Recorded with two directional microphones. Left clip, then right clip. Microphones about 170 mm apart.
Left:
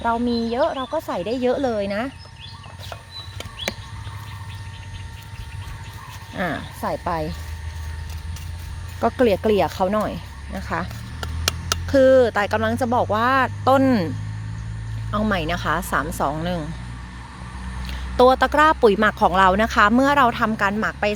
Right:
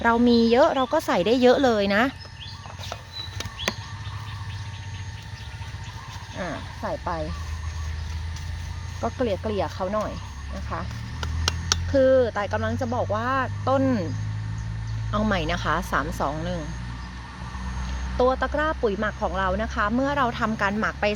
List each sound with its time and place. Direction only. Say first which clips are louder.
0.0 s speech: right 3 dB; 25° right (ahead or behind)
6.3 s speech: left 7 dB; 75° left (ahead or behind)
9.0 s speech: left 8 dB; 80° left
11.9 s speech: left 5 dB; 40° left (ahead or behind)
15.1 s speech: left 2 dB; 20° left (ahead or behind); by 16.6 s 40° left (ahead or behind)
18.2 s speech: left 8 dB; 55° left (ahead or behind); by 20.5 s 35° left (ahead or behind)
20.5 s speech: left 3 dB; 25° left (ahead or behind)